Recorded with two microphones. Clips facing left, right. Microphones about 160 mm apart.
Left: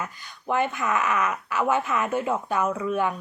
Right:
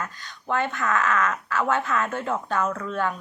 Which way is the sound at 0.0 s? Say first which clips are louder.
Even; 15° left (ahead or behind).